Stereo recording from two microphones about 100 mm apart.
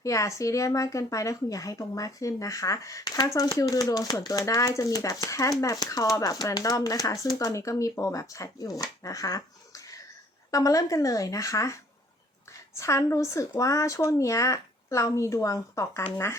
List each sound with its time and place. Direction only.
0.0 s speech: 30° left (ahead or behind)